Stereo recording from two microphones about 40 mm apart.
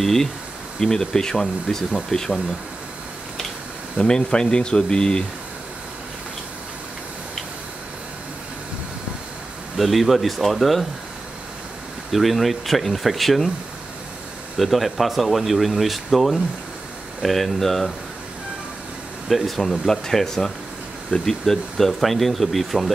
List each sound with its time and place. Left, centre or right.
0.0 s speech: centre
4.0 s speech: left
9.8 s speech: centre
12.1 s speech: centre
14.6 s speech: centre
19.2 s speech: centre